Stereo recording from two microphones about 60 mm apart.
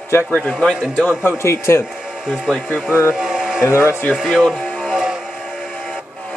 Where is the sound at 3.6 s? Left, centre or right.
Left.